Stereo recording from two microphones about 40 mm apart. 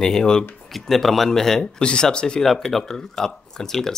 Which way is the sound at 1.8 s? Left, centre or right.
Left.